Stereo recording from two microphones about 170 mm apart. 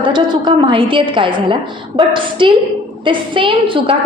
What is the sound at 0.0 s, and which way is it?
A woman's voice, 30° right (ahead or behind).